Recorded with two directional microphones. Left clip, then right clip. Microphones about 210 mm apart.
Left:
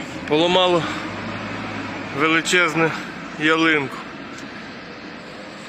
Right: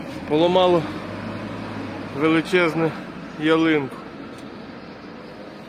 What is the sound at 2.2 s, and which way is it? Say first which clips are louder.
Speech: left 2 dB; 5° right (ahead or behind).